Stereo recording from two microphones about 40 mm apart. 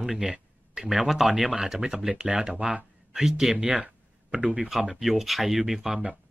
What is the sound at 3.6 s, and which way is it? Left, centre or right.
Speech, right.